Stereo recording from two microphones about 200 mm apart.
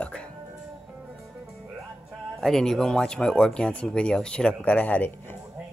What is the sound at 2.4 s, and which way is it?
Speech, centre (ahead or behind).